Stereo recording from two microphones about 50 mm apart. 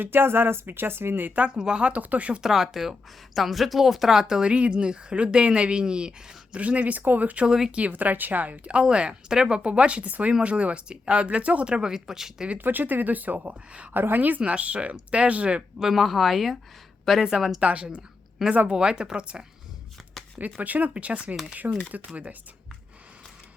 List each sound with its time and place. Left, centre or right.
0.0 s speech: right
1.4 s speech: centre
1.9 s speech: right
2.4 s speech: centre; by 7.4 s right
7.4 s speech: centre
7.8 s speech: right; by 12.5 s centre
12.5 s speech: right
13.9 s speech: right
15.8 s speech: centre
17.6 s speech: right
20.4 s speech: right